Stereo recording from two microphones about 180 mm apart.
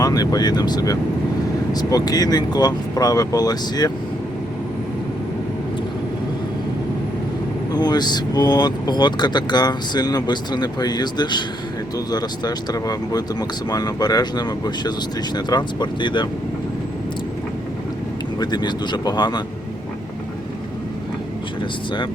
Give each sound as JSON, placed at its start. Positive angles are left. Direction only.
{"t": 0.0, "sound": "speech", "side_deg": 20}
{"t": 7.7, "sound": "speech", "side_deg": 20}
{"t": 18.3, "sound": "speech", "side_deg": 25}